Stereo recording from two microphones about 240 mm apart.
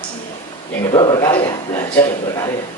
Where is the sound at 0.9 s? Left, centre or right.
Centre.